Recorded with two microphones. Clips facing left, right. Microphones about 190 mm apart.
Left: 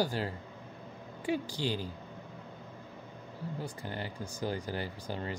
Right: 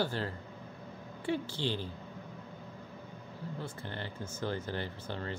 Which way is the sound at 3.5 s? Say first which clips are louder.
Left 2 dB; 10° left (ahead or behind).